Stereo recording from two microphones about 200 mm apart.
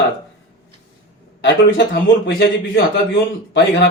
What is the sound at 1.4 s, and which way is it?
A man's voice, 60° left (ahead or behind).